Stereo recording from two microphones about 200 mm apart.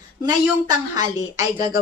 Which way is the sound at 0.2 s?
20° right (ahead or behind).